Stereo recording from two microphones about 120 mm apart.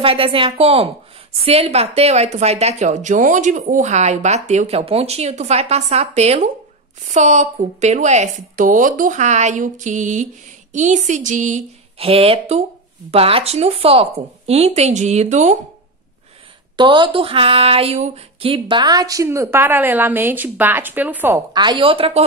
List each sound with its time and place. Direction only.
0.0 s a woman's voice: 50° right (ahead or behind)
7.1 s a woman's voice: 75° right (ahead or behind); by 11.6 s 90° right
12.0 s a woman's voice: 55° right (ahead or behind); by 15.5 s 75° right (ahead or behind)
16.7 s a sound: 40° right (ahead or behind); by 21.4 s 15° right (ahead or behind)
21.5 s speech: 40° right (ahead or behind)